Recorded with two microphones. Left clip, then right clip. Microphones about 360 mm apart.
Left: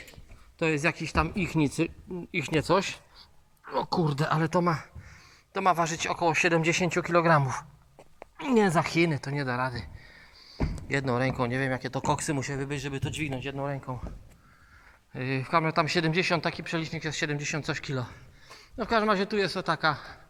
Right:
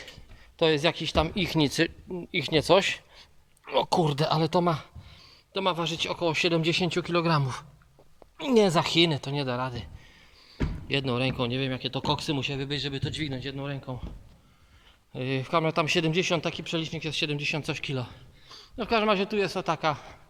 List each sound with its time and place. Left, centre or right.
0.6 s speech: centre
6.9 s speech: centre
11.5 s speech: centre
15.1 s speech: centre